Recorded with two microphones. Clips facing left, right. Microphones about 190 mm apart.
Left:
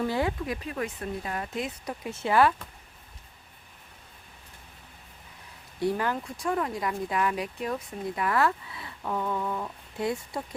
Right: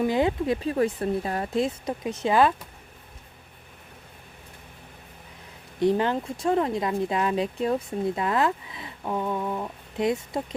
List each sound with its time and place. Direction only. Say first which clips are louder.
0.0 s speech: right 5 dB; 20° right (ahead or behind)
5.8 s speech: right 5 dB; 20° right (ahead or behind)